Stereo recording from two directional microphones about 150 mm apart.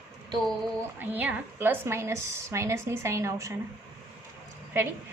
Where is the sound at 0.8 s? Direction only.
10° right (ahead or behind).